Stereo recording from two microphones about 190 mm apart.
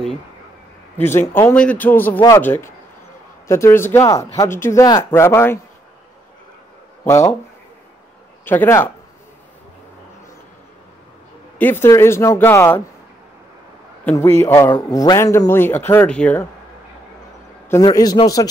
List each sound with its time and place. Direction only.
0.9 s a man's voice: 10° left (ahead or behind)
7.1 s a man's voice: 15° left (ahead or behind)
8.5 s a man's voice: 10° left (ahead or behind)
11.5 s a man's voice: 10° left (ahead or behind)
14.0 s a man's voice: 15° left (ahead or behind)
17.6 s a man's voice: 20° left (ahead or behind)